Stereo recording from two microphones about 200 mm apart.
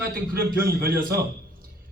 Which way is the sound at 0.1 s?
45° right (ahead or behind).